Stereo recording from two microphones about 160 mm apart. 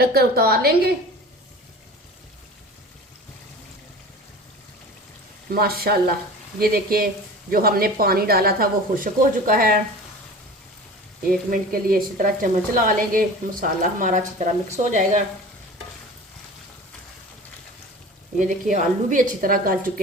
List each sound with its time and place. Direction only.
0.0 s speech: 75° right (ahead or behind)
5.5 s a woman's voice: 70° right (ahead or behind)
11.5 s a woman's voice: 65° right (ahead or behind)
18.3 s a woman's voice: 55° right (ahead or behind)